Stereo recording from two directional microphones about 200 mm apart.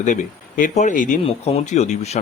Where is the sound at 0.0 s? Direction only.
40° left (ahead or behind).